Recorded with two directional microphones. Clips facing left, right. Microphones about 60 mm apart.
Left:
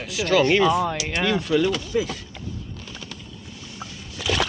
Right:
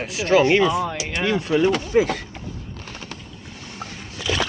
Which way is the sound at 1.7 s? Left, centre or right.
Right.